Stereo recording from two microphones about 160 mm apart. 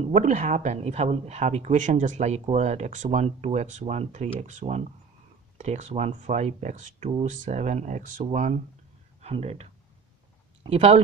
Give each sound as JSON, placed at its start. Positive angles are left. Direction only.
{"t": 0.1, "sound": "a woman's voice", "side_deg": -50}